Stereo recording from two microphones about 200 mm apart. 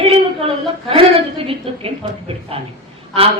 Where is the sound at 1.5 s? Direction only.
30° right (ahead or behind).